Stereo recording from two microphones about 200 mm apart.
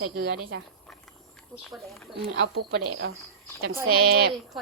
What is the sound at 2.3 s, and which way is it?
Speech, 70° right (ahead or behind).